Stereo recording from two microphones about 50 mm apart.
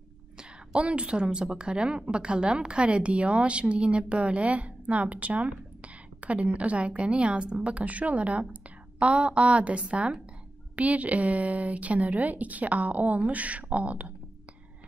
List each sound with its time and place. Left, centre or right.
0.4 s a woman's voice: right